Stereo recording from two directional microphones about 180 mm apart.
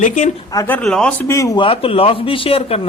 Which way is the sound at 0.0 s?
45° left (ahead or behind).